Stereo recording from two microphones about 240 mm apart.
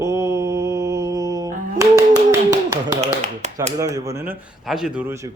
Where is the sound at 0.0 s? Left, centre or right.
Centre.